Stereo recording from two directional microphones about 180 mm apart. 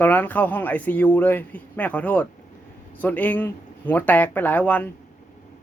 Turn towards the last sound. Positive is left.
turn(degrees=10)  # may be behind; listen again after turning